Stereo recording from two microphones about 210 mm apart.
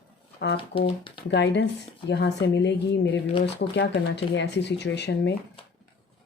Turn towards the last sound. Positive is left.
turn(degrees=55)  # may be behind; listen again after turning